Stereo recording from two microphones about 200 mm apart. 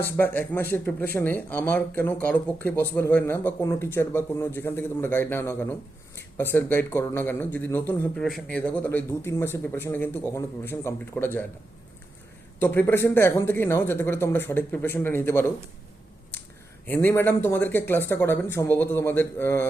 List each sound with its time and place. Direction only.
0.0 s speech: 10° left (ahead or behind)
12.5 s speech: 10° left (ahead or behind)
16.8 s speech: 10° left (ahead or behind)